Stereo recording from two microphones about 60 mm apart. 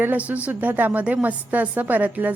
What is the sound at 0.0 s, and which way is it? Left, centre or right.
A woman's voice, right.